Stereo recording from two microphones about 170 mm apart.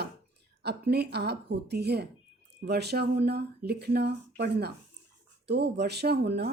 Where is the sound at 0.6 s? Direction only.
75° right (ahead or behind).